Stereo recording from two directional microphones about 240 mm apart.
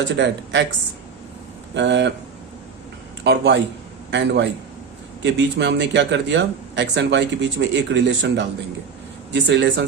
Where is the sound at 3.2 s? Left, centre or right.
Right.